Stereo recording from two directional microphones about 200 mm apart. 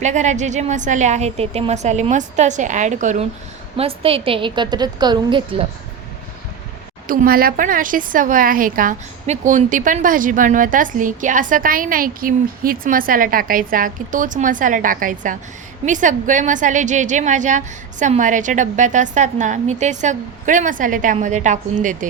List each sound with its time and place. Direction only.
0.0 s a woman's voice: 35° right (ahead or behind)
7.1 s a woman's voice: 45° right (ahead or behind)